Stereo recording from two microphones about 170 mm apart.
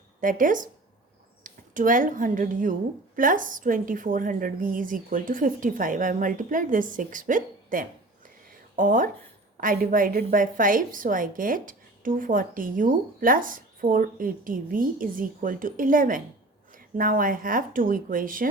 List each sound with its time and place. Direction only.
0.2 s a woman's voice: 50° right (ahead or behind)